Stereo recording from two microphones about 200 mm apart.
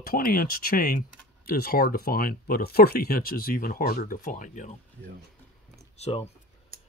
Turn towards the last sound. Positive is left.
turn(degrees=30)  # may be behind; listen again after turning